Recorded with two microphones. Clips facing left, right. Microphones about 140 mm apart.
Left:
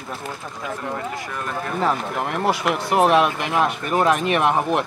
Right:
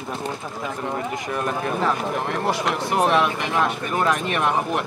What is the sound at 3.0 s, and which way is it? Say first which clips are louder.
Speech: left 3 dB; 20° left (ahead or behind).